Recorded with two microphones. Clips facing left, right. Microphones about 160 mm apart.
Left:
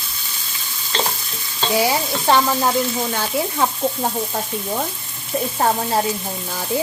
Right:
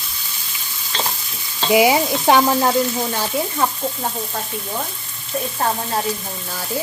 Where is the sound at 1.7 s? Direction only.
15° right (ahead or behind).